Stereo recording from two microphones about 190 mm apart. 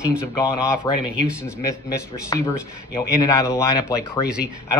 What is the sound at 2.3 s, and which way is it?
A man's voice, 20° left (ahead or behind).